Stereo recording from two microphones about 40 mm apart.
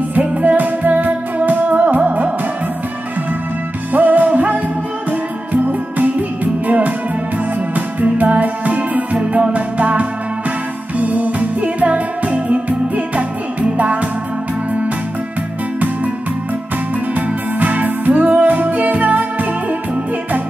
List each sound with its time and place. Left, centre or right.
0.1 s music: right
3.9 s music: right
17.1 s music: right